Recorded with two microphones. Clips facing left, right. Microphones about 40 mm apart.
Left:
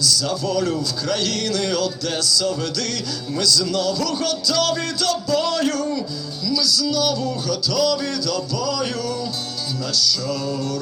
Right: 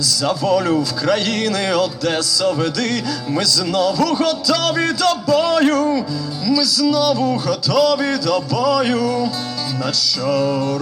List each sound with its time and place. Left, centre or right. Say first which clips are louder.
0.0 s a man's voice: right 3 dB; right